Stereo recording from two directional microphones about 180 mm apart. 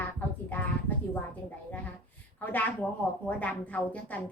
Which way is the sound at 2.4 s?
10° left (ahead or behind).